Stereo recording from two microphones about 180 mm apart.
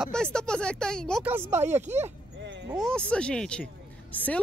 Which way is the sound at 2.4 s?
75° right (ahead or behind).